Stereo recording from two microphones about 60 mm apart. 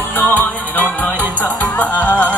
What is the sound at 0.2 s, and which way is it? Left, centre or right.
Music, left.